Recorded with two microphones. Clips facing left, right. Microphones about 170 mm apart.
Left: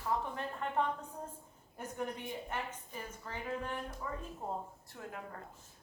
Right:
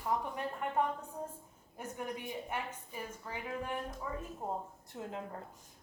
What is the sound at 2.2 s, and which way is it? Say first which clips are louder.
A woman's voice: right 1 dB; 10° right (ahead or behind).